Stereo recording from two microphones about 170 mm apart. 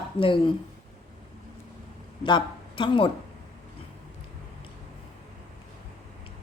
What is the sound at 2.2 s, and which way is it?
Speech, 30° left (ahead or behind).